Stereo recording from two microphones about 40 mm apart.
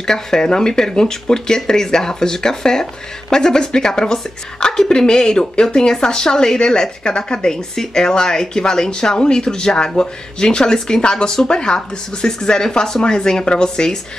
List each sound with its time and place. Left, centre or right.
0.0 s speech: centre